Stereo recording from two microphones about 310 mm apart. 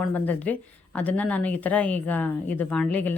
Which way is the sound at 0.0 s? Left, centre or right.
Centre.